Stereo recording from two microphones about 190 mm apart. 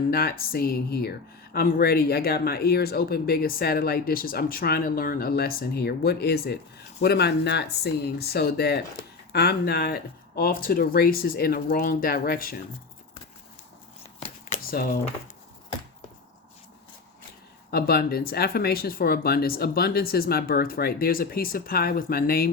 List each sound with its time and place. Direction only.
0.1 s speech: 50° left (ahead or behind)
14.5 s a sound: 50° left (ahead or behind)
17.7 s speech: 55° left (ahead or behind)